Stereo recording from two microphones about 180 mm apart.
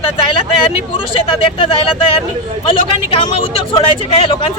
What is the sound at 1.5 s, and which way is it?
Speech, 30° left (ahead or behind).